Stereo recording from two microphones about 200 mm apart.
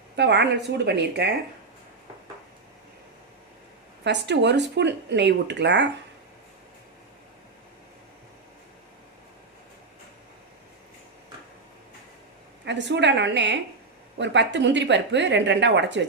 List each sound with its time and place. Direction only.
0.2 s speech: 60° right (ahead or behind)
4.0 s speech: 60° right (ahead or behind)
12.6 s speech: 60° right (ahead or behind)